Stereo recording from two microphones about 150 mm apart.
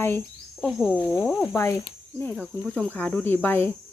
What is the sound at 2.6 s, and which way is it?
Speech, 5° left (ahead or behind).